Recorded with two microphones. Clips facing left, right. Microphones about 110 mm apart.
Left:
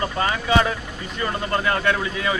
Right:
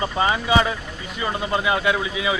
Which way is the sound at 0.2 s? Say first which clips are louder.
Right 1 dB; 15° right (ahead or behind).